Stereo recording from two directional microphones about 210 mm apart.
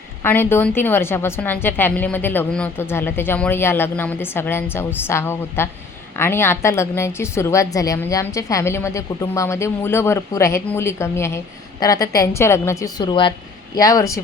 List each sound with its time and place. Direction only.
0.2 s a woman's voice: 10° left (ahead or behind)